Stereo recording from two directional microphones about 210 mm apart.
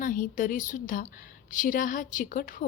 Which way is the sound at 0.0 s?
40° left (ahead or behind).